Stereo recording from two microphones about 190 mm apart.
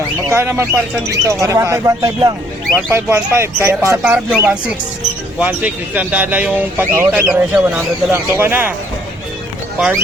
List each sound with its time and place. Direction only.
0.3 s speech: 15° right (ahead or behind)
9.7 s speech: 5° right (ahead or behind)